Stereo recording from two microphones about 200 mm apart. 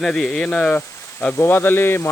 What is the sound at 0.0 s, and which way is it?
A man's voice, 5° left (ahead or behind).